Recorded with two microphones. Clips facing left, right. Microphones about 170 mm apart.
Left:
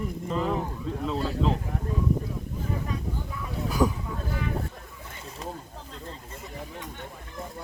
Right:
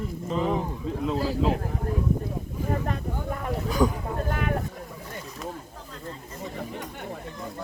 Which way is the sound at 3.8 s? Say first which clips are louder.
Right 1 dB; 5° left (ahead or behind).